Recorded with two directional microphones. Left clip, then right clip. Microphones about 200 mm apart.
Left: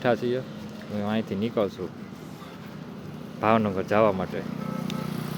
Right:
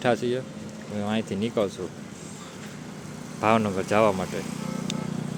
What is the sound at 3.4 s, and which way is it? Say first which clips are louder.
Speech: even; centre (ahead or behind).